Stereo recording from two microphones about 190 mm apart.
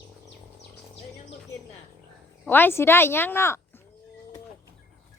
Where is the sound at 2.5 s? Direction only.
10° left (ahead or behind).